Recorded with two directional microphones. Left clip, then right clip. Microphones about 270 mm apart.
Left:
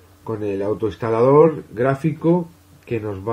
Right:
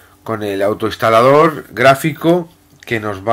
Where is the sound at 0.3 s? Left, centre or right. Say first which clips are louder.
Right 6 dB; centre.